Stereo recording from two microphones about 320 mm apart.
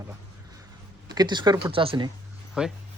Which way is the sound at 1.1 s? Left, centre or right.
Centre.